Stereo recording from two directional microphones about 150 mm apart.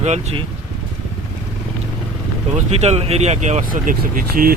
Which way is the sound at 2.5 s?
45° right (ahead or behind).